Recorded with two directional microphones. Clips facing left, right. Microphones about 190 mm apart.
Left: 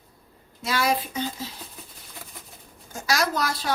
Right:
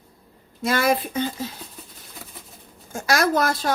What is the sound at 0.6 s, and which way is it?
Speech, 50° right (ahead or behind).